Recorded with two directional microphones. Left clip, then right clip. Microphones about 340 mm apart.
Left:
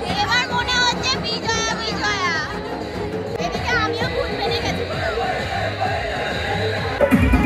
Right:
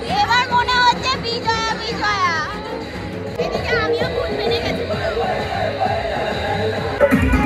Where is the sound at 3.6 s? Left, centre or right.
Centre.